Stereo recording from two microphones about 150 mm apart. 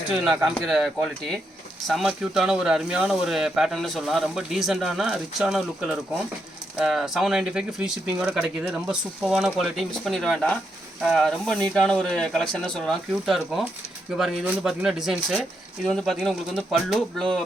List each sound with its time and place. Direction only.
0.1 s speech: 5° right (ahead or behind)